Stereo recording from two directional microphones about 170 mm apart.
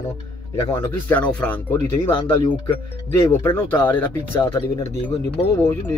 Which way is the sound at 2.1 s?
30° left (ahead or behind).